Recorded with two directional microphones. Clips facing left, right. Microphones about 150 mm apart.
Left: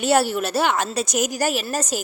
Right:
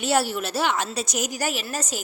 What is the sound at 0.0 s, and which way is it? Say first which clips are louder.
A woman's voice: left 4 dB; 50° left (ahead or behind).